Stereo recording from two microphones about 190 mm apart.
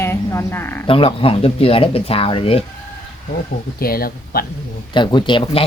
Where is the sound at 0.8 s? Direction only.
30° left (ahead or behind).